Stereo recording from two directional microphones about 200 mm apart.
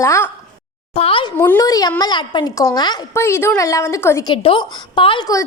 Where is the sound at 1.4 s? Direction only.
15° left (ahead or behind).